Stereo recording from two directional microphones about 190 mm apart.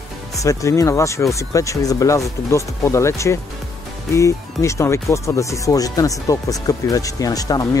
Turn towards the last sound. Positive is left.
turn(degrees=20)  # may be behind; listen again after turning